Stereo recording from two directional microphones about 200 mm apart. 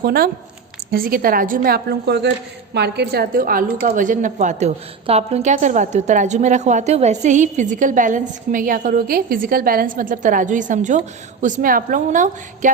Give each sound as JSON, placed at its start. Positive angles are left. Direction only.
{"t": 0.0, "sound": "a woman's voice", "side_deg": -50}